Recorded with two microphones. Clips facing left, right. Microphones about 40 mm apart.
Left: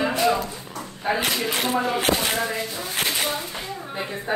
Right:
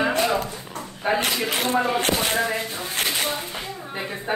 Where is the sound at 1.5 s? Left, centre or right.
Centre.